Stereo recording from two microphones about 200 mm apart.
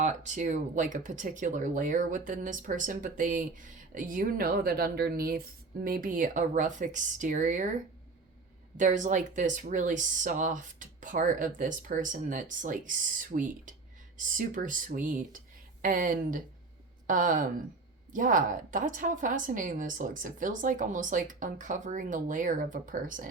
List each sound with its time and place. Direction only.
0.0 s speech: 40° right (ahead or behind)
8.8 s speech: 40° right (ahead or behind)